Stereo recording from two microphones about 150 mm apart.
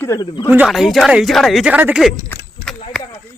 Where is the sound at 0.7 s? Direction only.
Centre (ahead or behind).